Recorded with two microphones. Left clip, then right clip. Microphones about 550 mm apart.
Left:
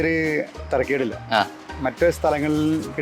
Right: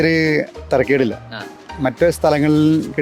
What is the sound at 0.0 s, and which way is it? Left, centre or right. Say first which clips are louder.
Speech: right 6 dB; right.